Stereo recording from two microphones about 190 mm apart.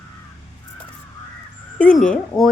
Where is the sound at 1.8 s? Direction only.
5° left (ahead or behind).